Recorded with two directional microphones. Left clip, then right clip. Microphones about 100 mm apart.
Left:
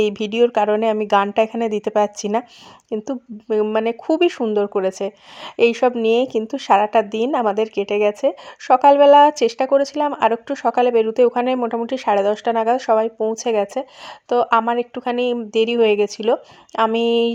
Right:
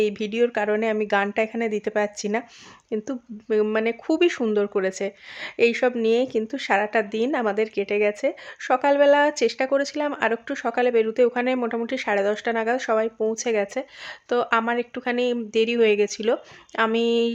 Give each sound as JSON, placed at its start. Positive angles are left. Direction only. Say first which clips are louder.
{"t": 0.0, "sound": "speech", "louder": "left 5 dB", "side_deg": 45}
{"t": 2.9, "sound": "a woman's voice", "louder": "left 4 dB", "side_deg": 30}